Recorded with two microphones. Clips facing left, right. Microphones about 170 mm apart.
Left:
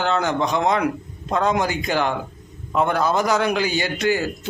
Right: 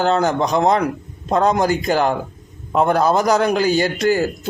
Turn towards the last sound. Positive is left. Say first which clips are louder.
# right 4 dB
turn(degrees=-40)  # may be behind; listen again after turning